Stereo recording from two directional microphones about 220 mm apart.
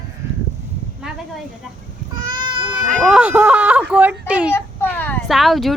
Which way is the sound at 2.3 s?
20° right (ahead or behind).